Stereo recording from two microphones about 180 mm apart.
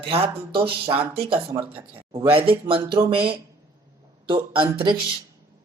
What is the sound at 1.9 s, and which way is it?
Speech, 30° right (ahead or behind).